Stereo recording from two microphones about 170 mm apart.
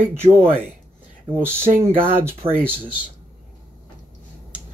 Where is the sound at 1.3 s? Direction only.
15° right (ahead or behind).